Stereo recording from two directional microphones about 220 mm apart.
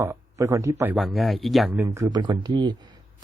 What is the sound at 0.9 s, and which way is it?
Speech, centre (ahead or behind).